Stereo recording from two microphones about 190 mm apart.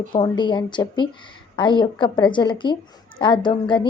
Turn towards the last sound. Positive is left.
turn(degrees=25)  # may be behind; listen again after turning